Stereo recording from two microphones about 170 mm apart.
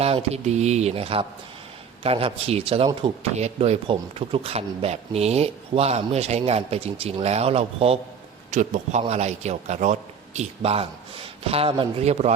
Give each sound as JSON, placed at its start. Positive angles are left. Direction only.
{"t": 0.0, "sound": "speech", "side_deg": -35}